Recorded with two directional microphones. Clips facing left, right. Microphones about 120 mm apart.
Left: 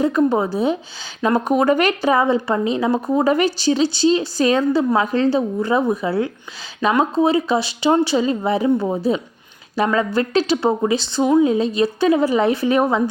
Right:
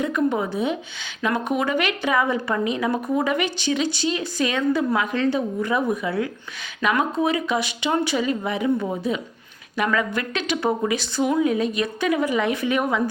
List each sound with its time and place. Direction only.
0.0 s a woman's voice: 35° left (ahead or behind)